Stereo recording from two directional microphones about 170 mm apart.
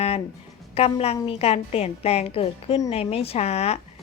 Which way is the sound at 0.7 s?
35° left (ahead or behind).